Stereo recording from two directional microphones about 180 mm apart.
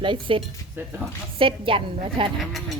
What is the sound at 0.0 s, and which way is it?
A woman's voice, 30° right (ahead or behind).